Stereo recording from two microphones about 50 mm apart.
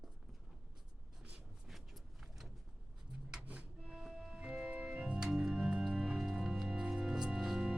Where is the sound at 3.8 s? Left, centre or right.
Centre.